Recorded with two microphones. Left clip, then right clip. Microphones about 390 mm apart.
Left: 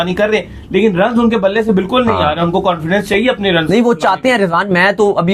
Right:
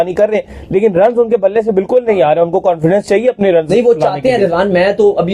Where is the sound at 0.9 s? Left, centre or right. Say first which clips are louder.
Right 3 dB; right.